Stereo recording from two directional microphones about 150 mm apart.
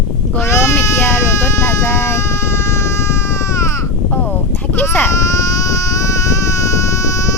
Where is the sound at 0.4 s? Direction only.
20° left (ahead or behind).